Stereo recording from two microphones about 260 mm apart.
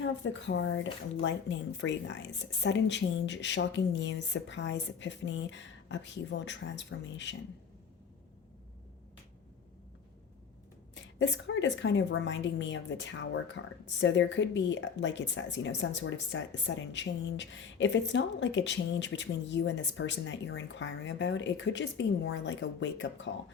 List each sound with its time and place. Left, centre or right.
0.0 s speech: left
10.9 s speech: left